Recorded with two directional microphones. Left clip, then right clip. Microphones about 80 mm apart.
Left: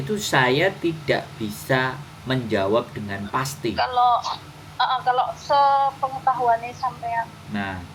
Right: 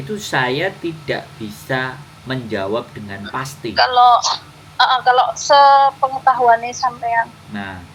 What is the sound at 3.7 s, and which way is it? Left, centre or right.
A woman's voice, right.